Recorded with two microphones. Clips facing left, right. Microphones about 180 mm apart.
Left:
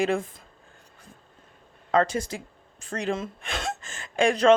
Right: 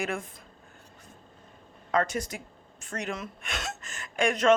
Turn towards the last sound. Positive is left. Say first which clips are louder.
# left 4 dB
turn(degrees=30)  # may be behind; listen again after turning